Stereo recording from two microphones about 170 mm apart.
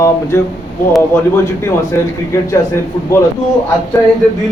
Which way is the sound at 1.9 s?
15° left (ahead or behind).